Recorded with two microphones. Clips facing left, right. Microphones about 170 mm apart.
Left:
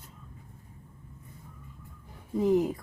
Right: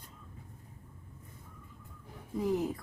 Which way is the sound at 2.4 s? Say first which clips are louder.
Left 6 dB; 25° left (ahead or behind).